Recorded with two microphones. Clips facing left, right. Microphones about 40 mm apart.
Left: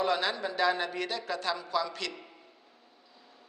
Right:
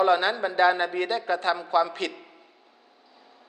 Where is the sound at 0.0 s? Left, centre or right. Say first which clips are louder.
Right 7 dB; right.